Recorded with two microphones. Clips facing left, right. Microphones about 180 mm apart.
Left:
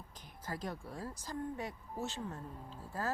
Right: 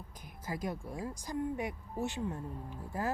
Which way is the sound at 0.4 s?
10° right (ahead or behind).